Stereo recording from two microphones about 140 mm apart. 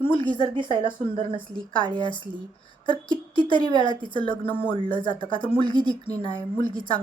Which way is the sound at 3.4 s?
35° right (ahead or behind).